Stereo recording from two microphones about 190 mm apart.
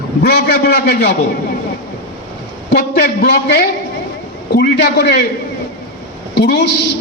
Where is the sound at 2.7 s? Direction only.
55° left (ahead or behind).